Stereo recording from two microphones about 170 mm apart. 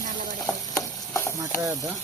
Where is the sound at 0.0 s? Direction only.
50° right (ahead or behind).